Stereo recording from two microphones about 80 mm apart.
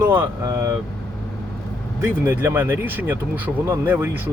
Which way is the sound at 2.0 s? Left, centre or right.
Right.